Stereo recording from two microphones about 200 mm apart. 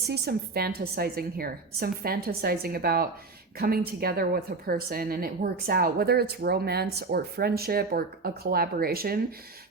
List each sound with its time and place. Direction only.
0.1 s a woman's voice: 50° right (ahead or behind)